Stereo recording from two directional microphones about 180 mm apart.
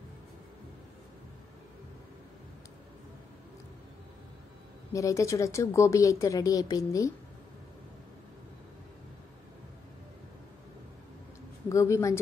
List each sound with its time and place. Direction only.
4.9 s a woman's voice: 15° left (ahead or behind)
11.7 s a woman's voice: 15° left (ahead or behind)